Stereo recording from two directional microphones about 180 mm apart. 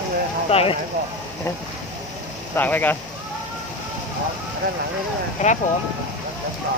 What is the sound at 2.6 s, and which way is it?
Speech, 10° left (ahead or behind).